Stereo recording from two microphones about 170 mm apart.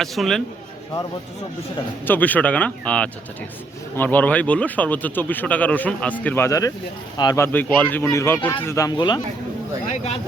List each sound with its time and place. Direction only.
0.0 s a man's voice: centre (ahead or behind)
2.0 s speech: 10° left (ahead or behind)